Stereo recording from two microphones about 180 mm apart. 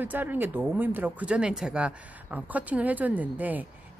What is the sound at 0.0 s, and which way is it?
Speech, 10° right (ahead or behind).